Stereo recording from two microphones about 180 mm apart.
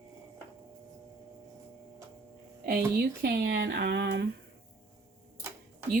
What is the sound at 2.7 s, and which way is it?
Speech, 55° right (ahead or behind).